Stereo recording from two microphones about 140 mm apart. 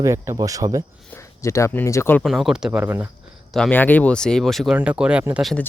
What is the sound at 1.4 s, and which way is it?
Speech, 20° left (ahead or behind).